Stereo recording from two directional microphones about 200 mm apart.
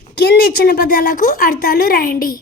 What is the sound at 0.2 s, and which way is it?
A woman's voice, 50° left (ahead or behind).